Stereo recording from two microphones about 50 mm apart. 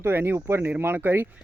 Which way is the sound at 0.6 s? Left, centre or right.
Right.